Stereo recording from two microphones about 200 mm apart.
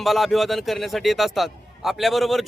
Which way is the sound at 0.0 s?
Centre (ahead or behind).